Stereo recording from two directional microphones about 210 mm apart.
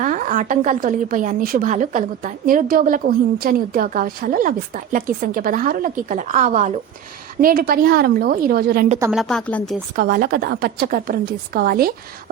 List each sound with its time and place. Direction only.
0.0 s a woman's voice: 40° right (ahead or behind)
9.1 s speech: 5° left (ahead or behind)
9.9 s a woman's voice: 40° right (ahead or behind)